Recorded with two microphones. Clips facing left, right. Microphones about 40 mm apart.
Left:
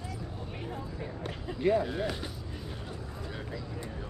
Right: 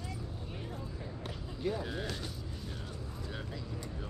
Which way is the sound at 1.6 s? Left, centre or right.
Left.